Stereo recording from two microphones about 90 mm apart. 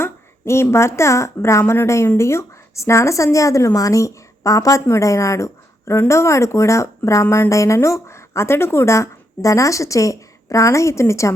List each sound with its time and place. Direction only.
0.0 s a woman's voice: 30° left (ahead or behind)